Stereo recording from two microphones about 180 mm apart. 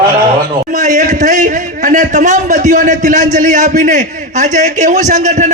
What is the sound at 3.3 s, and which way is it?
A man's voice, 45° right (ahead or behind).